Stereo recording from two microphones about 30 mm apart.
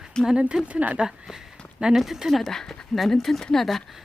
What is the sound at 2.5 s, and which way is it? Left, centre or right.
Speech, centre.